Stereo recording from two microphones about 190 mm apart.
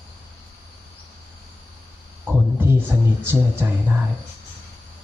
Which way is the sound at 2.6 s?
10° right (ahead or behind).